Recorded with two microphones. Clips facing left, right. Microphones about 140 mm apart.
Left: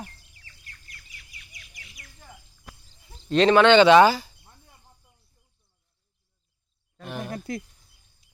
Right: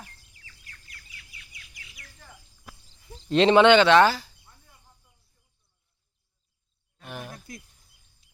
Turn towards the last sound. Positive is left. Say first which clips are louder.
# left 11 dB
turn(degrees=70)  # may be behind; listen again after turning